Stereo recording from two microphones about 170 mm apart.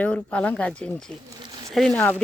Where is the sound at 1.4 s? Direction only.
30° right (ahead or behind).